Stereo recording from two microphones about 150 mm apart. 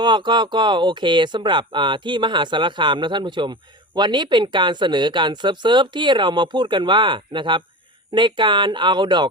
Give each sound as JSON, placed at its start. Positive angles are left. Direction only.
{"t": 0.0, "sound": "speech", "side_deg": -30}